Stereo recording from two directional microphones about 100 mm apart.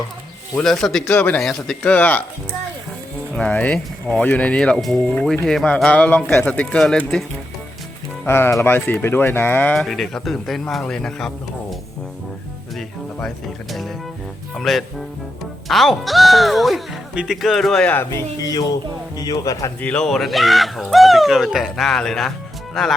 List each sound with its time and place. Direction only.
0.6 s speech: 5° left (ahead or behind)
1.0 s speech: 20° left (ahead or behind)
1.4 s speech: 5° left (ahead or behind)
3.3 s speech: 15° left (ahead or behind)
8.3 s speech: 25° left (ahead or behind)
9.7 s speech: 5° left (ahead or behind)
14.5 s speech: centre (ahead or behind)
18.1 s speech: 35° left (ahead or behind)
19.8 s speech: 10° left (ahead or behind)